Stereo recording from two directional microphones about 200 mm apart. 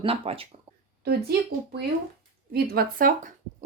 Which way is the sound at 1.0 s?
50° right (ahead or behind).